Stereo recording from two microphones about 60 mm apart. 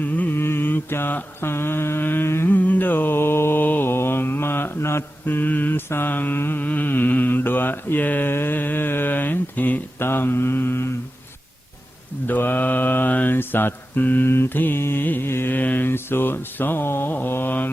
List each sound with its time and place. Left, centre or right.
0.0 s mantra: left
0.3 s mantra: left
2.5 s mantra: left
5.2 s mantra: left
8.3 s a sound: left
12.3 s mantra: left
14.3 s mantra: left